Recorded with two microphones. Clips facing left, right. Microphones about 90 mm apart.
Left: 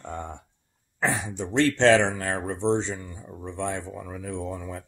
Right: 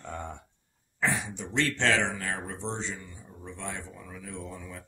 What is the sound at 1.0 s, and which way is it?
Speech, 35° left (ahead or behind).